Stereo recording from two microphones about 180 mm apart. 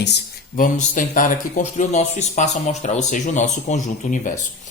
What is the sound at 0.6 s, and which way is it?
Speech, 50° left (ahead or behind).